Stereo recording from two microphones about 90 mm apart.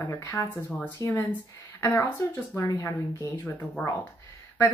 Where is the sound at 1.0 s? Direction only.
35° left (ahead or behind).